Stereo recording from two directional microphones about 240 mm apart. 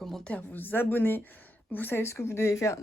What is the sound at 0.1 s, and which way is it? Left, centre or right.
Speech, centre.